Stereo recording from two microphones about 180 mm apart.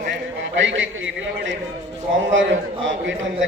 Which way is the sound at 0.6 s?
90° right.